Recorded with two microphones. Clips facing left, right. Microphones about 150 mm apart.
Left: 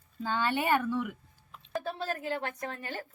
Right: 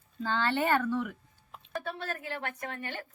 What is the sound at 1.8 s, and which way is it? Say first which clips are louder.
A woman's voice: left 4 dB; 30° left (ahead or behind).